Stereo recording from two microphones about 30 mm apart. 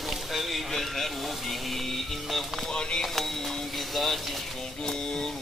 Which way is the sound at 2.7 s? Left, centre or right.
Left.